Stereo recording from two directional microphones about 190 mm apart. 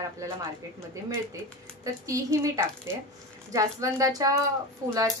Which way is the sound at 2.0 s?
15° right (ahead or behind).